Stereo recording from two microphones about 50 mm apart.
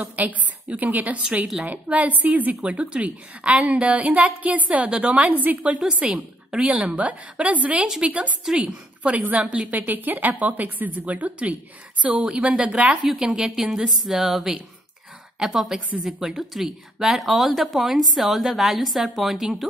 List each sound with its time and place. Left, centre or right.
0.1 s a woman's voice: right
2.6 s a woman's voice: right
5.1 s a woman's voice: right
9.8 s a woman's voice: right
12.2 s a woman's voice: centre